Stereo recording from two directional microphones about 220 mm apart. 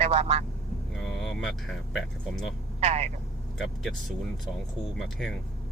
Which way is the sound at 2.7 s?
30° right (ahead or behind).